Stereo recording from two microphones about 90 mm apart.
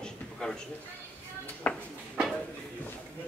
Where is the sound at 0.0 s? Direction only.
10° left (ahead or behind).